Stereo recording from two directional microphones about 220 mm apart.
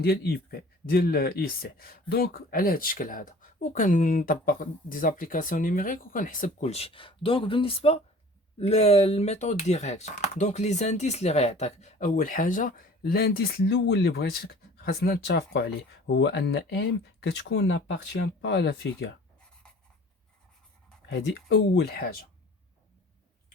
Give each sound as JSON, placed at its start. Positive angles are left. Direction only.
{"t": 0.0, "sound": "speech", "side_deg": 45}
{"t": 21.1, "sound": "speech", "side_deg": 50}